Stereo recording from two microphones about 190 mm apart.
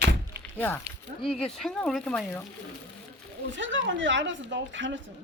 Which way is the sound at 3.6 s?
75° right (ahead or behind).